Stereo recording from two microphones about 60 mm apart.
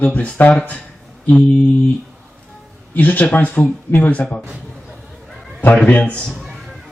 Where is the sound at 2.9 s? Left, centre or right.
Left.